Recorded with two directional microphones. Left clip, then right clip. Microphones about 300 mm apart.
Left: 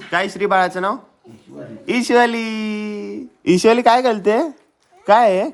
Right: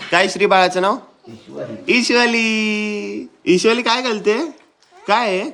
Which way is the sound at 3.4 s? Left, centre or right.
Centre.